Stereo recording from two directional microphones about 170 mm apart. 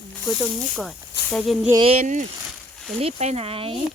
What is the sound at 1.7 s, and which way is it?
Speech, 35° right (ahead or behind).